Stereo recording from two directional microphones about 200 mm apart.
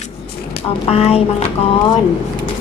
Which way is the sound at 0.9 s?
30° left (ahead or behind).